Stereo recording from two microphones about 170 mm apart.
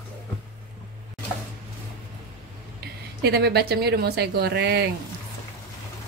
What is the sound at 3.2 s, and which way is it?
Speech, 75° right (ahead or behind).